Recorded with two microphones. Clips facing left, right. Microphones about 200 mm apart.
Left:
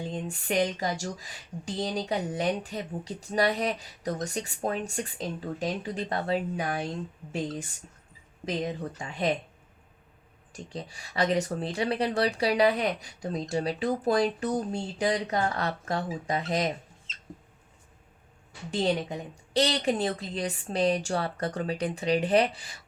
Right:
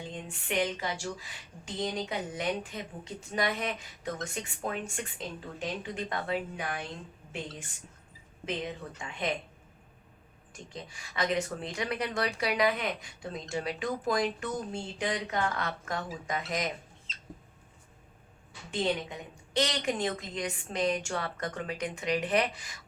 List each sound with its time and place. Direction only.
0.1 s speech: 40° left (ahead or behind)
8.4 s speech: 40° left (ahead or behind)
10.5 s speech: 35° left (ahead or behind)
18.7 s speech: 35° left (ahead or behind)